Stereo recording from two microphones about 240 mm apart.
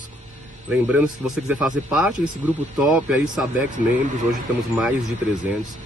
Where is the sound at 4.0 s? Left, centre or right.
Right.